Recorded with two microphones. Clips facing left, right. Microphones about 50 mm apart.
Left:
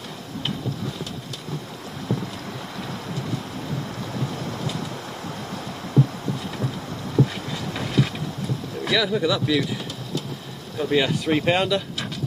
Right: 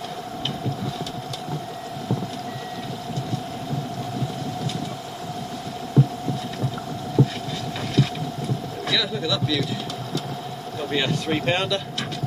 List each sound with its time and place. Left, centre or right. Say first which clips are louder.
8.8 s speech: left 4 dB; centre
10.9 s speech: left 3 dB; centre